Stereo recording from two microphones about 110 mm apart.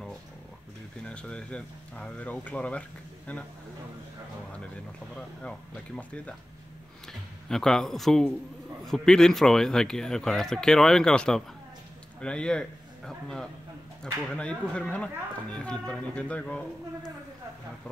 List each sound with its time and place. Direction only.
1.0 s speech: 10° left (ahead or behind)
5.1 s a man's voice: 10° left (ahead or behind)